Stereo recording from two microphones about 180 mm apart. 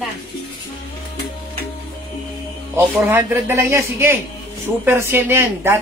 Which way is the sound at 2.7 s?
10° right (ahead or behind).